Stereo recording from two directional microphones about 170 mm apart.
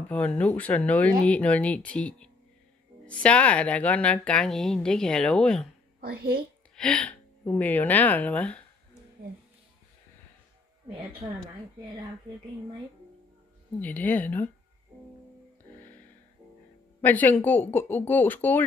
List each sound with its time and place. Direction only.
0.1 s speech: 10° left (ahead or behind)
5.9 s a woman's voice: 65° right (ahead or behind)
6.7 s a woman's voice: 5° left (ahead or behind)
13.7 s speech: 10° left (ahead or behind)
17.0 s speech: 10° left (ahead or behind)